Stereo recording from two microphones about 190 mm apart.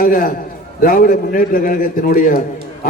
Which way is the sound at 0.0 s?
45° left (ahead or behind).